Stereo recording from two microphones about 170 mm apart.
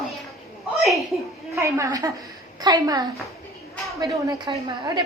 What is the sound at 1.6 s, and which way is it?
A woman's voice, 15° right (ahead or behind).